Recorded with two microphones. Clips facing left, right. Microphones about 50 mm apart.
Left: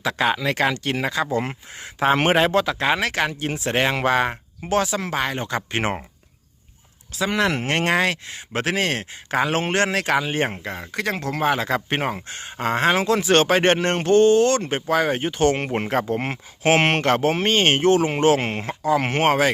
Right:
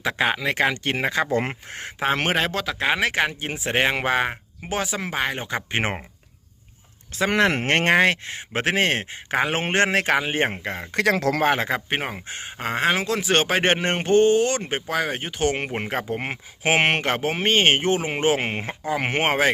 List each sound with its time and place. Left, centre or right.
0.0 s speech: right
2.1 s speech: centre
2.6 s speech: centre
3.0 s speech: centre
7.2 s speech: right
10.9 s speech: right
11.4 s speech: right
11.7 s speech: centre